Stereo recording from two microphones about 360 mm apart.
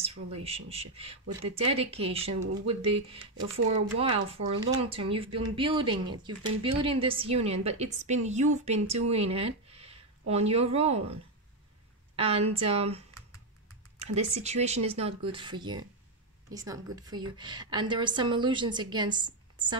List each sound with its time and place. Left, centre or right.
0.0 s speech: centre
12.2 s speech: centre